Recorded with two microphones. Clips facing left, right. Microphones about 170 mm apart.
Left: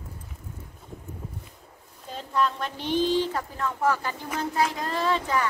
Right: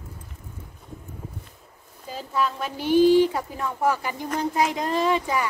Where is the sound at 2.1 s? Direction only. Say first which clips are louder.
Even; 5° right (ahead or behind).